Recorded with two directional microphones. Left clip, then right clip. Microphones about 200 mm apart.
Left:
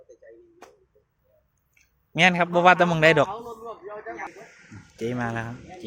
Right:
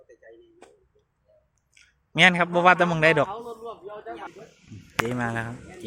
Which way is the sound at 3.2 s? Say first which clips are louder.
Even; 20° left (ahead or behind).